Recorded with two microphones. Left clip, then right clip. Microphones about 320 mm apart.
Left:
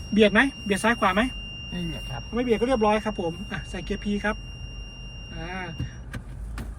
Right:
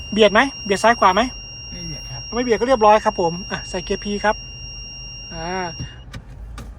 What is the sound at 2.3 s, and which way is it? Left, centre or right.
Speech, right.